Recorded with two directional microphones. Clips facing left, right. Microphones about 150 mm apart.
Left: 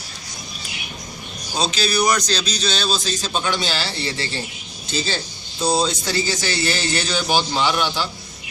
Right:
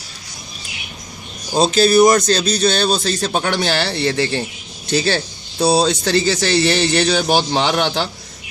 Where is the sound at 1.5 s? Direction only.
50° right (ahead or behind).